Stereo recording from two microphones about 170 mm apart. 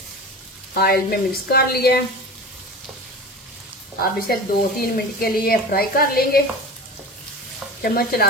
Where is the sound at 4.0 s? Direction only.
60° left (ahead or behind).